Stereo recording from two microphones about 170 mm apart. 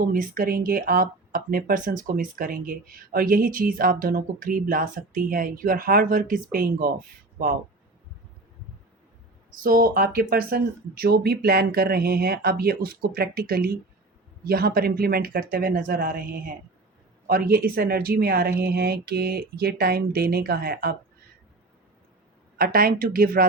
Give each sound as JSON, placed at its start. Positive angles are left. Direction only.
{"t": 0.0, "sound": "speech", "side_deg": -55}
{"t": 9.6, "sound": "speech", "side_deg": -55}
{"t": 22.5, "sound": "speech", "side_deg": -60}